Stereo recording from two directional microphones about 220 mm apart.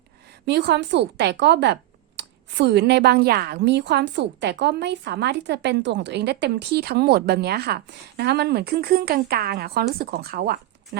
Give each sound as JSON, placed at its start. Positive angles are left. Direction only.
{"t": 0.4, "sound": "a woman's voice", "side_deg": -50}